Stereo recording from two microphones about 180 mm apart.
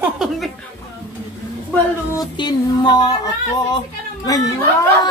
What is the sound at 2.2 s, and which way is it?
Speech, 25° left (ahead or behind).